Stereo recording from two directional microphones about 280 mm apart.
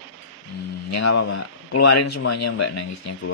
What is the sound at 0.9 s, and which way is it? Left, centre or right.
Speech, left.